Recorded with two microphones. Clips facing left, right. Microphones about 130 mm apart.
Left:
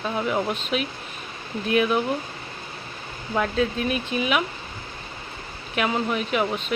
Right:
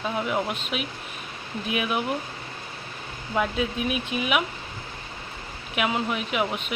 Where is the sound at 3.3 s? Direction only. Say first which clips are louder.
Left 2 dB; 5° right (ahead or behind).